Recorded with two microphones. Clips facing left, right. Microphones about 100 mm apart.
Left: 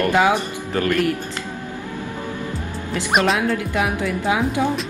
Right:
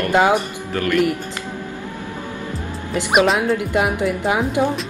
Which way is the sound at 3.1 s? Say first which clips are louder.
Right 3 dB; 5° right (ahead or behind).